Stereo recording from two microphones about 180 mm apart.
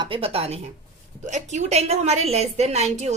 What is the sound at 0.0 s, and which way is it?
A woman's voice, 30° right (ahead or behind).